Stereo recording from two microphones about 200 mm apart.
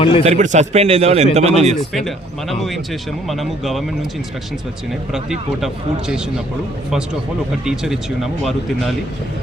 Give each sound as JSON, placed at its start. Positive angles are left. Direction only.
{"t": 0.0, "sound": "a man's voice", "side_deg": 25}
{"t": 0.3, "sound": "a man's voice", "side_deg": -35}
{"t": 2.0, "sound": "speech", "side_deg": 0}
{"t": 5.1, "sound": "speech", "side_deg": 0}
{"t": 7.6, "sound": "speech", "side_deg": 0}